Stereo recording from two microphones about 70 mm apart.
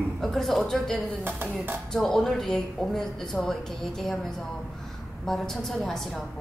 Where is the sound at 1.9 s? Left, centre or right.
Centre.